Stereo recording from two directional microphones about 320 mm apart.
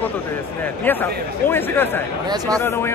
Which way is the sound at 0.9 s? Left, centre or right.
Centre.